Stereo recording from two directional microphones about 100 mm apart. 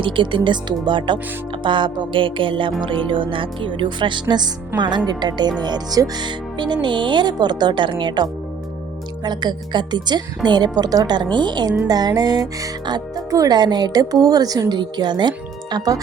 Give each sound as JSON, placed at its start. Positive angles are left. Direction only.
{"t": 0.0, "sound": "speech", "side_deg": -55}